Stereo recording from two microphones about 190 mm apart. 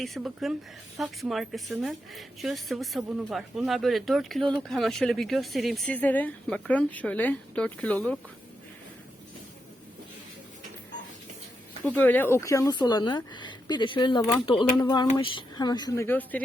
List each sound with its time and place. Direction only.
0.0 s a woman's voice: centre (ahead or behind)
11.9 s speech: 10° left (ahead or behind)